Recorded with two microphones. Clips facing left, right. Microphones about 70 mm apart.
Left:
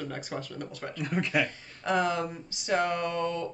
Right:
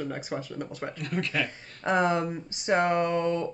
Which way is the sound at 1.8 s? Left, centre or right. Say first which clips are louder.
Right 2 dB; right.